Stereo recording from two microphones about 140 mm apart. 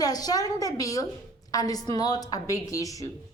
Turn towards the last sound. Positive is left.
turn(degrees=25)  # may be behind; listen again after turning